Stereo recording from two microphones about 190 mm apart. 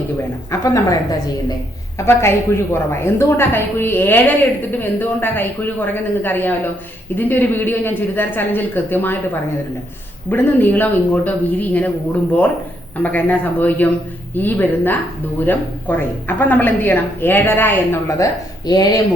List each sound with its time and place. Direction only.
0.6 s a woman's voice: 15° left (ahead or behind)
2.0 s a woman's voice: 15° left (ahead or behind)
10.2 s a woman's voice: 10° left (ahead or behind)
13.0 s a woman's voice: 10° left (ahead or behind)